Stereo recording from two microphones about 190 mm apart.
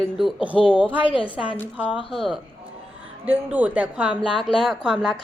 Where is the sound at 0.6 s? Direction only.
25° left (ahead or behind).